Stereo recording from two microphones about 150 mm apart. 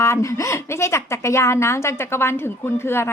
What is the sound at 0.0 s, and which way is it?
A woman's voice, 20° left (ahead or behind).